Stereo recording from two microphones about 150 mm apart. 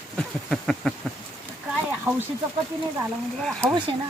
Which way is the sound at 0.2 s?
Centre (ahead or behind).